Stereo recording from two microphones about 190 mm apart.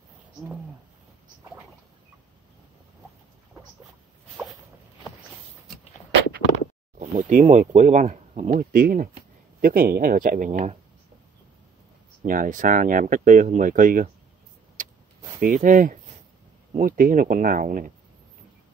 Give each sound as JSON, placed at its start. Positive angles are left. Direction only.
{"t": 7.0, "sound": "speech", "side_deg": -40}
{"t": 12.2, "sound": "speech", "side_deg": -45}
{"t": 14.8, "sound": "vehicle", "side_deg": -45}
{"t": 15.4, "sound": "speech", "side_deg": -45}